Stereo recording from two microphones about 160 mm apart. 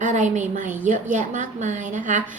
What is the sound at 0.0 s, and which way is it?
A woman's voice, 50° right (ahead or behind).